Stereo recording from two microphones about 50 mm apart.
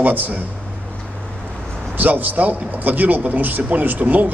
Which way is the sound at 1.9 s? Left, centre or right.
Right.